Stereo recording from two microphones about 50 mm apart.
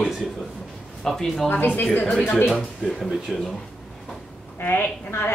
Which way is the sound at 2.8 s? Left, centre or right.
Centre.